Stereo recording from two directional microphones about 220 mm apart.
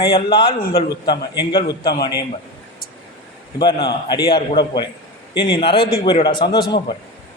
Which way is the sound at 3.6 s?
20° left (ahead or behind).